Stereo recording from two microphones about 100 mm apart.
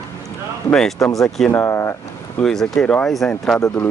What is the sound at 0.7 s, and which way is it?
Speech, 5° left (ahead or behind).